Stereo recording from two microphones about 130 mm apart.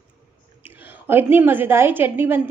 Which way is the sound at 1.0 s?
15° right (ahead or behind).